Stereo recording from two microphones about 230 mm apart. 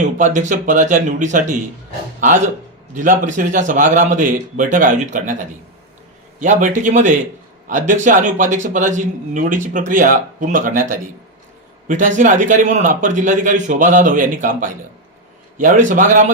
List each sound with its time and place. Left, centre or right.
0.0 s a man's voice: right
2.9 s a man's voice: right